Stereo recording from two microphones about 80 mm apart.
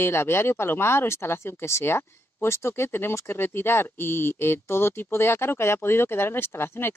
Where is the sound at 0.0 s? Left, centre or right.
Left.